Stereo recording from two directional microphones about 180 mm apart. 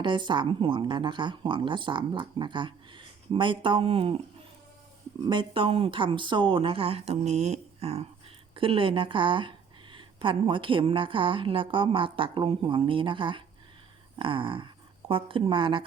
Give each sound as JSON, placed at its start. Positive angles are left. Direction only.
{"t": 0.0, "sound": "speech", "side_deg": -25}
{"t": 5.2, "sound": "a woman's voice", "side_deg": -25}